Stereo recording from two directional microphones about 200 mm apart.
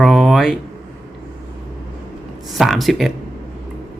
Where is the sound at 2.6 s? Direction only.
Centre (ahead or behind).